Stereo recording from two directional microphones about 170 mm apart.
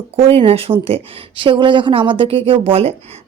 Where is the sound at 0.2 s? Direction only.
35° right (ahead or behind).